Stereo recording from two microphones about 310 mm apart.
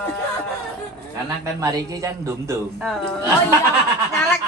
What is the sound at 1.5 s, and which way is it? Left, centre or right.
Speech, centre.